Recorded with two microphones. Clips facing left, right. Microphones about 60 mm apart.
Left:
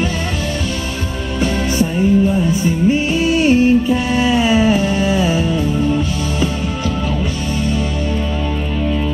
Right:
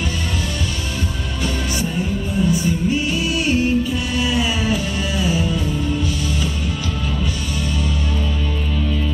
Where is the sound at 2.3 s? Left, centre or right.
Left.